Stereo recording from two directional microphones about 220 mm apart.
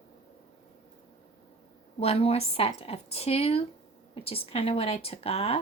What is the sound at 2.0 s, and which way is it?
Speech, 25° left (ahead or behind).